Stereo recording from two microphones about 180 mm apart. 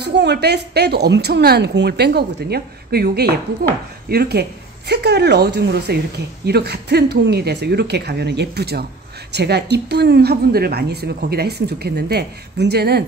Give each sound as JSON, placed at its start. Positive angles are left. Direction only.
{"t": 0.0, "sound": "a woman's voice", "side_deg": -70}